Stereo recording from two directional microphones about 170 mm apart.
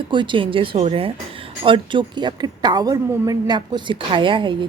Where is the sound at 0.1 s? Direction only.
30° right (ahead or behind).